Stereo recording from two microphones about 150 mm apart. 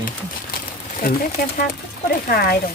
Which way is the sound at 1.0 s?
75° left (ahead or behind).